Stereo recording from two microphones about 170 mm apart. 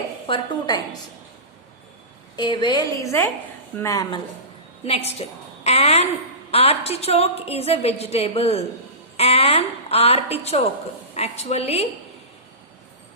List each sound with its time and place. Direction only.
0.3 s a woman's voice: 30° left (ahead or behind)
2.3 s a woman's voice: 25° left (ahead or behind)
4.8 s a woman's voice: 35° left (ahead or behind)